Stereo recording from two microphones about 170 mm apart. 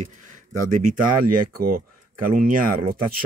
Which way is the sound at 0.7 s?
45° right (ahead or behind).